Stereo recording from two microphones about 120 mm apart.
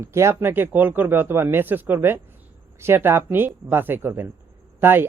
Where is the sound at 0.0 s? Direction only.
20° right (ahead or behind).